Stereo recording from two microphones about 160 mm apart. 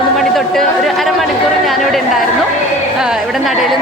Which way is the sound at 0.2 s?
Centre (ahead or behind).